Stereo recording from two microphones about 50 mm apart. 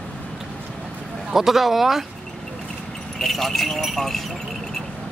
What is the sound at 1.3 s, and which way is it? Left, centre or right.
Speech, centre.